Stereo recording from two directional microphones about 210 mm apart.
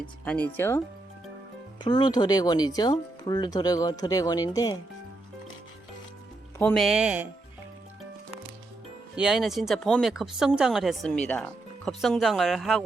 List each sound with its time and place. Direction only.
0.0 s speech: 5° left (ahead or behind)
1.8 s speech: 20° left (ahead or behind)
6.6 s speech: 5° left (ahead or behind)
9.1 s speech: 5° right (ahead or behind)